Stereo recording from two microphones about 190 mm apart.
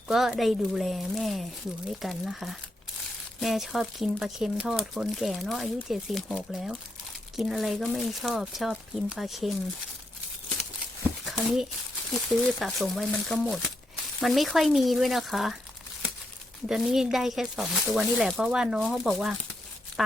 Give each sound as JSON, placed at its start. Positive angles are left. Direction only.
{"t": 0.1, "sound": "speech", "side_deg": 0}
{"t": 11.3, "sound": "speech", "side_deg": 0}
{"t": 16.6, "sound": "speech", "side_deg": 0}